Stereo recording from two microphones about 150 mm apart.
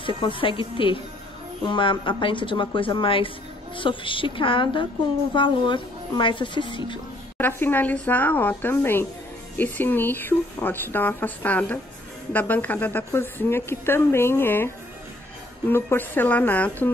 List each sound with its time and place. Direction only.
0.0 s speech: 35° left (ahead or behind)
7.3 s speech: 15° left (ahead or behind)
15.7 s speech: 15° left (ahead or behind)